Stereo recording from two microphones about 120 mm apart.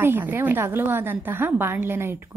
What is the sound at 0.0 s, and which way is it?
A woman's voice, 15° right (ahead or behind).